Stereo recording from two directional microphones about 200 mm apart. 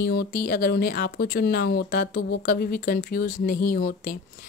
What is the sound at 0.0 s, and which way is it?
Speech, 55° left (ahead or behind).